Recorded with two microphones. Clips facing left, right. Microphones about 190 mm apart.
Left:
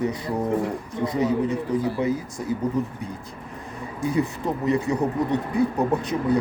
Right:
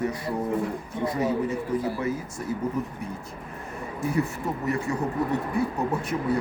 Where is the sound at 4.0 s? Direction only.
15° left (ahead or behind).